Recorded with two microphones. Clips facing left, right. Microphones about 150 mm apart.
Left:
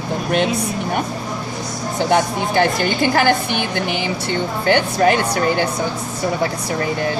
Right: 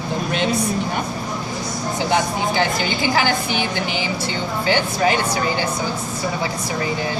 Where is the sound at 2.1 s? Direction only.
55° left (ahead or behind).